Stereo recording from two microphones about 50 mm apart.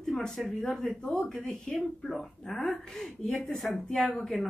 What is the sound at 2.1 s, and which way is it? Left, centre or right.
Speech, centre.